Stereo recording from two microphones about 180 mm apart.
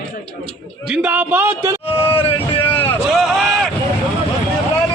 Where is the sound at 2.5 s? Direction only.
10° left (ahead or behind).